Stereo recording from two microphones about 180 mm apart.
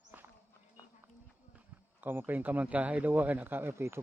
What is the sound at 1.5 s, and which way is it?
Speech, 10° right (ahead or behind).